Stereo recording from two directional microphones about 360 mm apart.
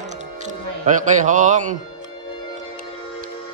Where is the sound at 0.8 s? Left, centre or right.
Right.